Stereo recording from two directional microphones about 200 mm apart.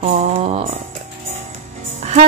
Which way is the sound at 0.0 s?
30° right (ahead or behind).